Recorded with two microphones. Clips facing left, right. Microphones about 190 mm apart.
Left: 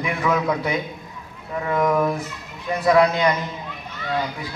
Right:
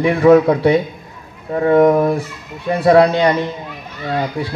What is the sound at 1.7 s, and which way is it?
A man's voice, 30° right (ahead or behind).